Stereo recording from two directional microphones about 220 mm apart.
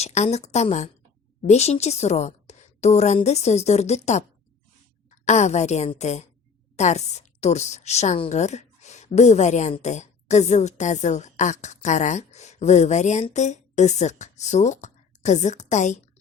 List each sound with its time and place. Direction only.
0.0 s a woman's voice: 30° left (ahead or behind)
5.2 s a woman's voice: 30° left (ahead or behind)